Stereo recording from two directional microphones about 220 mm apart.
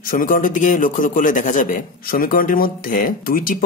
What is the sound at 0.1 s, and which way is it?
A man's voice, 40° left (ahead or behind).